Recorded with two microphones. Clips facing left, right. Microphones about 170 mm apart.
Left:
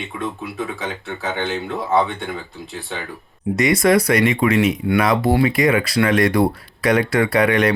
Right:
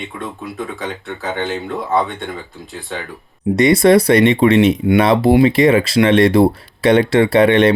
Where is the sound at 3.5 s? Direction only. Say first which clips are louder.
Right 5 dB; 30° right (ahead or behind).